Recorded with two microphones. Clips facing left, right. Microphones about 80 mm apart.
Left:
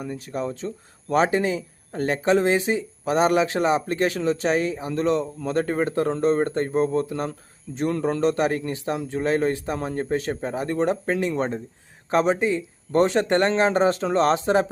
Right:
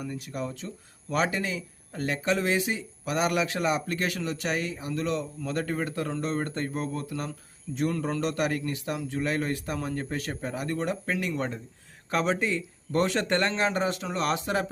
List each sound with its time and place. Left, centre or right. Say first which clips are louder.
0.0 s speech: left 5 dB; left
12.1 s speech: left 6 dB; centre